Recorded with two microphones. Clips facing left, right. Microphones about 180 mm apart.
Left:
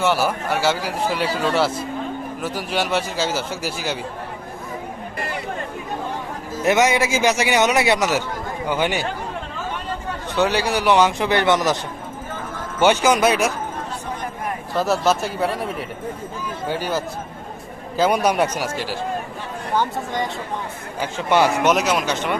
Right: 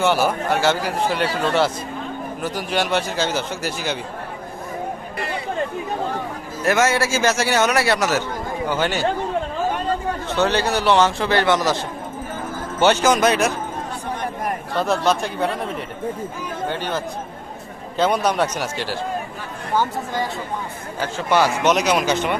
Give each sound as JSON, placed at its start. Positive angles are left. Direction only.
{"t": 0.0, "sound": "a man's voice", "side_deg": 5}
{"t": 6.6, "sound": "a man's voice", "side_deg": 20}
{"t": 10.3, "sound": "a man's voice", "side_deg": 10}
{"t": 12.8, "sound": "a man's voice", "side_deg": 10}
{"t": 14.8, "sound": "a man's voice", "side_deg": 5}
{"t": 16.6, "sound": "a man's voice", "side_deg": 5}
{"t": 21.0, "sound": "a man's voice", "side_deg": 20}
{"t": 21.7, "sound": "a man's voice", "side_deg": 0}